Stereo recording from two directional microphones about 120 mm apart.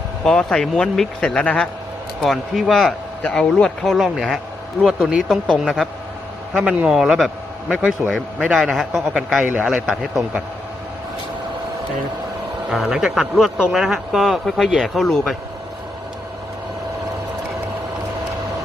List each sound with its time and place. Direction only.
0.3 s a man's voice: 5° left (ahead or behind)
9.1 s a man's voice: 10° right (ahead or behind)
12.7 s a man's voice: 5° right (ahead or behind)